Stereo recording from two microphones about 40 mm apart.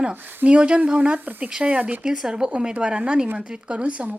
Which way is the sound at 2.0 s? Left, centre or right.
Centre.